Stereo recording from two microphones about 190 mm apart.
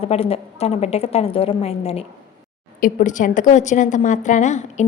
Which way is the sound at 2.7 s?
45° left (ahead or behind).